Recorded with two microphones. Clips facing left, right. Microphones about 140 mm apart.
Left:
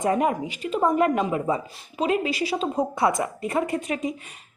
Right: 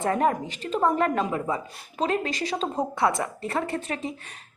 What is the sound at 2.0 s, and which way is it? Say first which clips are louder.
Speech: left 3 dB; 10° left (ahead or behind).